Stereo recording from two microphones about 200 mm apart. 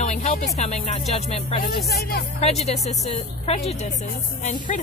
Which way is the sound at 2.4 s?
35° left (ahead or behind).